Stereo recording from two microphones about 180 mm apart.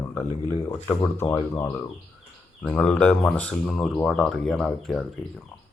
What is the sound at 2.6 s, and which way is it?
Speech, 10° left (ahead or behind).